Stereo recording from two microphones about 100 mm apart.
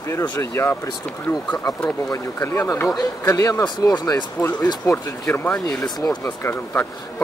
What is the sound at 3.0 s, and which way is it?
Speech, 35° left (ahead or behind).